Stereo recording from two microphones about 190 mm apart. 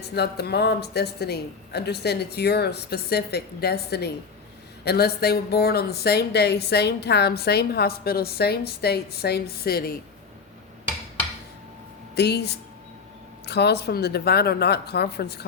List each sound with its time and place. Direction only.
0.1 s a woman's voice: 60° left (ahead or behind)
12.1 s a woman's voice: 60° left (ahead or behind)